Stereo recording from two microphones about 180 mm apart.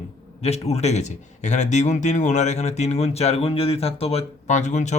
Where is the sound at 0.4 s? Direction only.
35° left (ahead or behind).